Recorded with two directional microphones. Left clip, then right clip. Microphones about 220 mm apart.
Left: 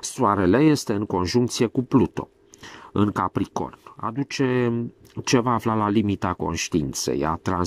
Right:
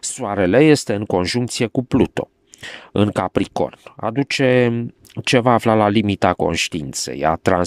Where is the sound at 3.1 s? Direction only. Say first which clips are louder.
Right 5 dB; 55° right (ahead or behind).